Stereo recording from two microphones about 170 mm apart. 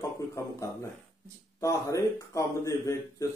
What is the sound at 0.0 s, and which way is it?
A man's voice, 20° left (ahead or behind).